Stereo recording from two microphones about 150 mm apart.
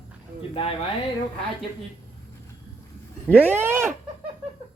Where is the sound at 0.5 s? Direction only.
35° left (ahead or behind).